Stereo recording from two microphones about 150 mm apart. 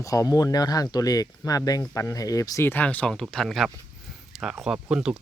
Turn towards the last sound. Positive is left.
turn(degrees=-5)  # may be behind; listen again after turning